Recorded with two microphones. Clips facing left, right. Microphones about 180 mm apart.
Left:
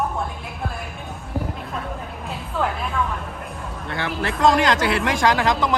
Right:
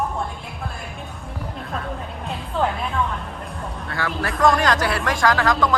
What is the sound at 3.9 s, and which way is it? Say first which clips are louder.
Speech: even; 20° left (ahead or behind).